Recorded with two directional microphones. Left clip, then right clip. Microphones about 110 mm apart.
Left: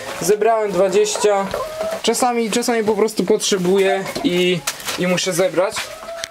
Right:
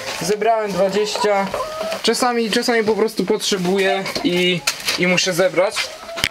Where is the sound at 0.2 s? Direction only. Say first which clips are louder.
Left 2 dB; 30° left (ahead or behind).